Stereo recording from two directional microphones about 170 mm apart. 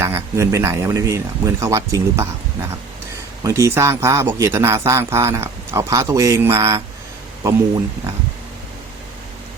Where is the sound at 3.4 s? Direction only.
20° right (ahead or behind).